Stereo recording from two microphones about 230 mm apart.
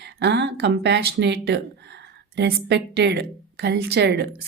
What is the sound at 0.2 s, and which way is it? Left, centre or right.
A woman's voice, right.